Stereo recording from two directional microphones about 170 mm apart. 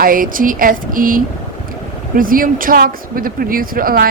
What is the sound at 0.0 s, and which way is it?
Speech, 55° right (ahead or behind).